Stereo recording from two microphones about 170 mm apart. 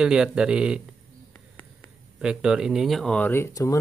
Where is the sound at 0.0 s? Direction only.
5° right (ahead or behind).